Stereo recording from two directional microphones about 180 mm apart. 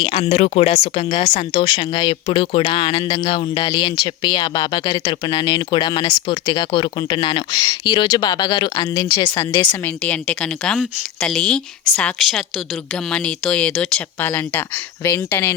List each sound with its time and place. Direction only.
0.0 s speech: 30° left (ahead or behind)
9.8 s a woman's voice: 10° left (ahead or behind)